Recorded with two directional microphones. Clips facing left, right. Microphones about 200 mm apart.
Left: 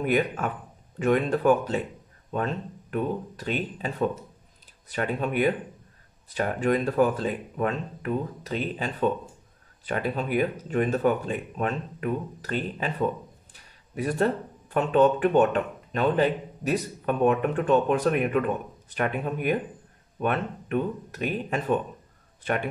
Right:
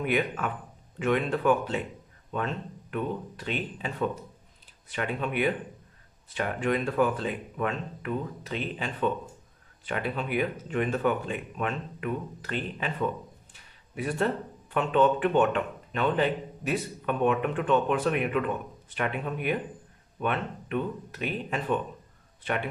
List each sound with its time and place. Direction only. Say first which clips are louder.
0.0 s speech: left 3 dB; 40° left (ahead or behind)